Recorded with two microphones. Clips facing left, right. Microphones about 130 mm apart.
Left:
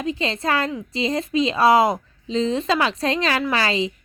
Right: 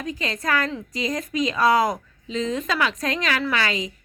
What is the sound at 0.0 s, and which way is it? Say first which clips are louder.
A woman's voice: left 4 dB; 25° left (ahead or behind).